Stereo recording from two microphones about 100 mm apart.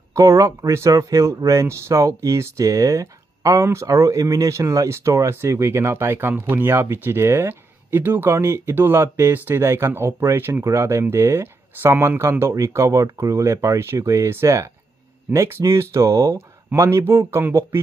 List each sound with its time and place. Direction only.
0.1 s speech: 30° right (ahead or behind)